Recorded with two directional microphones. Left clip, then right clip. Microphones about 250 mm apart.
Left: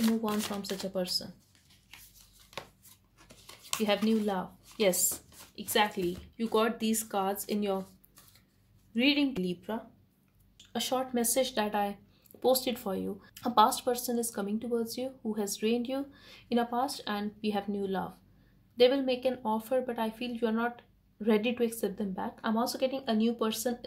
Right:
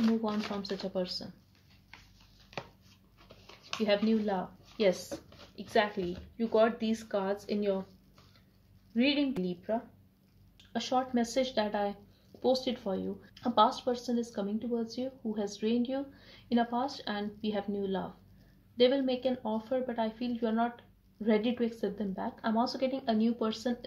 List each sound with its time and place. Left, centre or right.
0.2 s speech: left
3.8 s speech: left
8.9 s speech: left